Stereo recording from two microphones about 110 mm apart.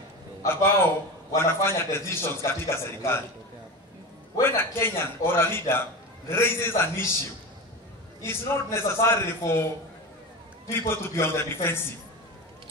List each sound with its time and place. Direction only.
0.4 s a man's voice: 20° left (ahead or behind)
4.4 s a man's voice: 20° left (ahead or behind)
8.2 s a man's voice: 25° left (ahead or behind)
10.7 s a man's voice: 20° left (ahead or behind)